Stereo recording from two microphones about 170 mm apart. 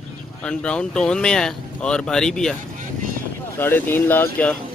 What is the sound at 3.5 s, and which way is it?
Speech, 10° left (ahead or behind).